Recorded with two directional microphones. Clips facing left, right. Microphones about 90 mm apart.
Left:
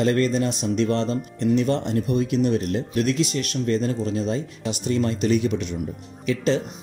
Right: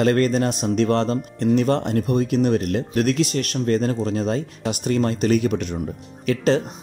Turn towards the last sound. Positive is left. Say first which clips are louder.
# right 2 dB
turn(degrees=-50)  # may be behind; listen again after turning